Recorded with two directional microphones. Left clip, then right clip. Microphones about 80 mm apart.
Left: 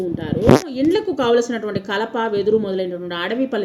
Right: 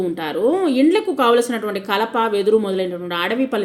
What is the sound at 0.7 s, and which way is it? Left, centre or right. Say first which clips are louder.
A woman's voice: right 2 dB; right.